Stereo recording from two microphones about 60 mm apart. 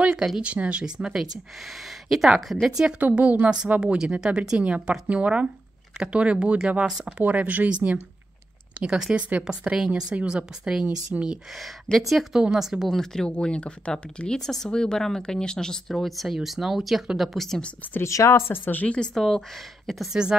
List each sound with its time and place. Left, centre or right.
0.0 s speech: centre
1.7 s speech: centre
3.0 s a woman's voice: right
8.7 s speech: centre
10.9 s speech: right
11.5 s speech: centre
13.0 s speech: centre
18.0 s speech: left
18.5 s speech: left
18.9 s speech: centre
20.1 s speech: centre